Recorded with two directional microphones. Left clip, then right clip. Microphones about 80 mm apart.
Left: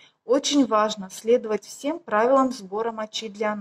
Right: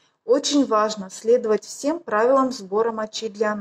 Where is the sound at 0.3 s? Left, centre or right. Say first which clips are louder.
Right 2 dB; right.